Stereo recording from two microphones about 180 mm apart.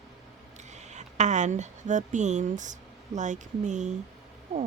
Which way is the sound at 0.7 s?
40° right (ahead or behind).